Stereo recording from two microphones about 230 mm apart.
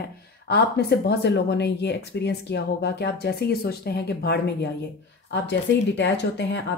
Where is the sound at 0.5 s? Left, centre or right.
Left.